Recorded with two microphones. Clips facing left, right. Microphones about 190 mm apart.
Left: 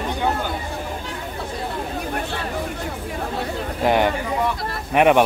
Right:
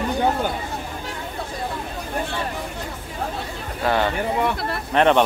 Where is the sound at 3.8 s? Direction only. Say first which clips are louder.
Left 2 dB; 15° left (ahead or behind).